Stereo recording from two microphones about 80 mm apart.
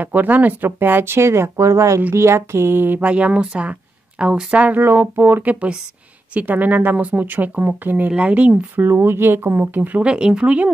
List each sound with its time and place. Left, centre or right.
0.0 s speech: right
10.0 s speech: centre